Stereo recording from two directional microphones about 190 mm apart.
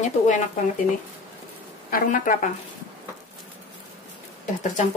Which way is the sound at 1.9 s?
45° left (ahead or behind).